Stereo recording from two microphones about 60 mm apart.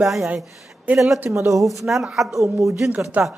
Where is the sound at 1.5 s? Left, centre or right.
Right.